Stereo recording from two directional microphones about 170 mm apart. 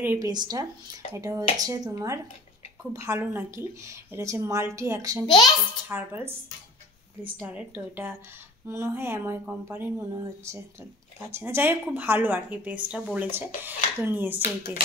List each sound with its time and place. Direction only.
0.0 s speech: 10° right (ahead or behind)
0.3 s speech: 25° right (ahead or behind)
5.2 s a child's voice: 25° left (ahead or behind)
5.9 s speech: 10° right (ahead or behind)
7.3 s speech: 5° right (ahead or behind)